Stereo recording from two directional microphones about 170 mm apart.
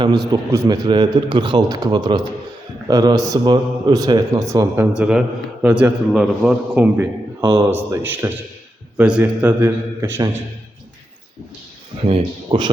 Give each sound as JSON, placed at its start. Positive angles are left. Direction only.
{"t": 0.3, "sound": "a man's voice", "side_deg": -20}
{"t": 4.9, "sound": "a man's voice", "side_deg": -5}
{"t": 12.0, "sound": "speech", "side_deg": -35}